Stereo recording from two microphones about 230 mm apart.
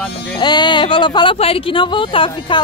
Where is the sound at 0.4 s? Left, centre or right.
Centre.